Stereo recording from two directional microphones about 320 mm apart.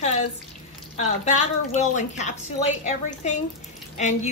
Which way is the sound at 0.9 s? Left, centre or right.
Left.